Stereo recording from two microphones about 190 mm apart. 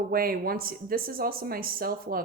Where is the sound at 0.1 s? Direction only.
50° right (ahead or behind).